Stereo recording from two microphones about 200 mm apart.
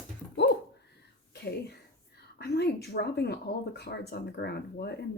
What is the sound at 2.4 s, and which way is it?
Speech, 55° left (ahead or behind).